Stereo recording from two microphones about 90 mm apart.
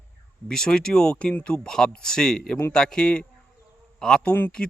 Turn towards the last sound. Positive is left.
turn(degrees=15)  # may be behind; listen again after turning